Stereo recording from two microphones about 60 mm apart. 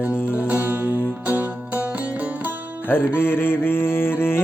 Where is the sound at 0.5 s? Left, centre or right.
Right.